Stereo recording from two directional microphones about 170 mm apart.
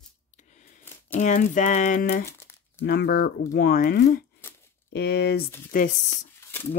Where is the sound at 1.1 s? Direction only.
45° left (ahead or behind).